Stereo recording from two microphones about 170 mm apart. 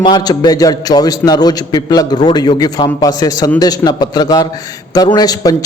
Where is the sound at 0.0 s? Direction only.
25° left (ahead or behind).